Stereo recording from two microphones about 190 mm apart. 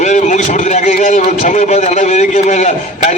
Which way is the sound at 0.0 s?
40° left (ahead or behind).